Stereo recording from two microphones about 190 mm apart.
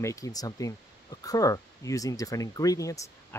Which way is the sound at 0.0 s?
15° left (ahead or behind).